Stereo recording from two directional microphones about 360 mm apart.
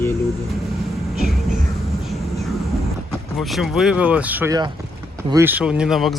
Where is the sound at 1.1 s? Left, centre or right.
Centre.